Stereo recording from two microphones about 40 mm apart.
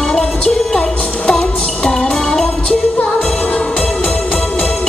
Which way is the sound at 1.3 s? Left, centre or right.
Left.